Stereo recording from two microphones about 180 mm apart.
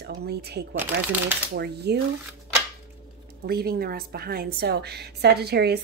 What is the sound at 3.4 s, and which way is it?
A woman's voice, 60° right (ahead or behind).